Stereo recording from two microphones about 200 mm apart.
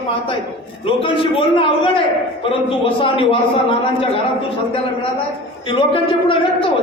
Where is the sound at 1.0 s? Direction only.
25° left (ahead or behind).